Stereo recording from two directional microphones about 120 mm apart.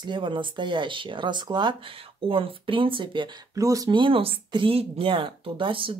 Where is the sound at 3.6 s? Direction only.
25° right (ahead or behind).